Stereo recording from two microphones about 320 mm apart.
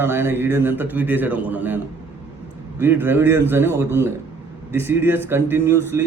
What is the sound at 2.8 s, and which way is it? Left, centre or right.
Speech, centre.